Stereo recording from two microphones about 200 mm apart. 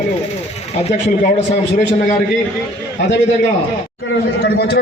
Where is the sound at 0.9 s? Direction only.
35° left (ahead or behind).